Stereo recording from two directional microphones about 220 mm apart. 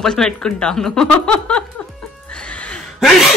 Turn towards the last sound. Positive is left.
turn(degrees=0)  # may be behind; listen again after turning